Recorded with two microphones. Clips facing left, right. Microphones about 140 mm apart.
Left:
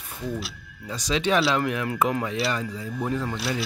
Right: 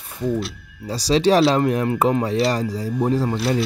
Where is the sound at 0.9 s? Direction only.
35° right (ahead or behind).